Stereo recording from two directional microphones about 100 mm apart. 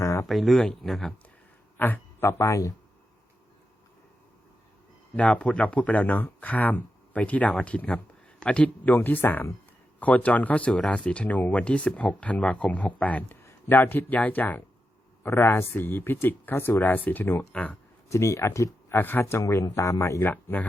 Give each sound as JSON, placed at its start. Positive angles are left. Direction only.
{"t": 0.0, "sound": "a sound", "side_deg": 30}
{"t": 0.3, "sound": "speech", "side_deg": 0}
{"t": 1.8, "sound": "a man's voice", "side_deg": 20}
{"t": 5.1, "sound": "speech", "side_deg": 15}
{"t": 18.1, "sound": "speech", "side_deg": 30}
{"t": 20.2, "sound": "speech", "side_deg": 15}